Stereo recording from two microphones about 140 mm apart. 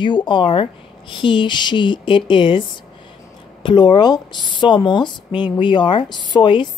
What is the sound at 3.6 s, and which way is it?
A woman's voice, 30° left (ahead or behind).